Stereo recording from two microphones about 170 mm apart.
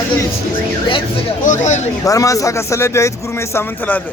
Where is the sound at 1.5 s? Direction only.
45° left (ahead or behind).